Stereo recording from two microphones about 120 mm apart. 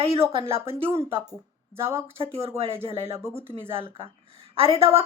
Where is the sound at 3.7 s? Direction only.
50° right (ahead or behind).